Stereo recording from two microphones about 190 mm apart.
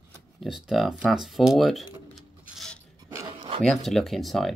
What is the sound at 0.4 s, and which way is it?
Speech, centre (ahead or behind).